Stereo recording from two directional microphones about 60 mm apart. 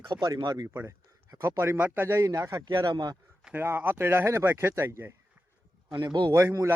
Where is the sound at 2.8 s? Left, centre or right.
Right.